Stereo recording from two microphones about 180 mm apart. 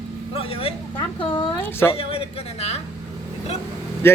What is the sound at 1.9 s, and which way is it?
Speech, 30° left (ahead or behind).